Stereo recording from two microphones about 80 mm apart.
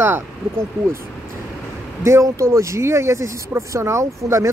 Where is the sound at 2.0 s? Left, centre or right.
Right.